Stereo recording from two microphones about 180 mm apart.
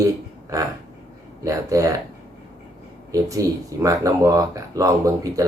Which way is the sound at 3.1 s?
20° right (ahead or behind).